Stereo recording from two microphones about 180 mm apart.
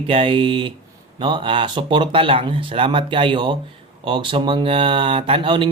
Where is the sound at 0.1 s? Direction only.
30° right (ahead or behind).